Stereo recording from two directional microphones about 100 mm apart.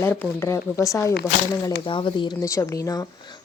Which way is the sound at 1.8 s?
55° left (ahead or behind).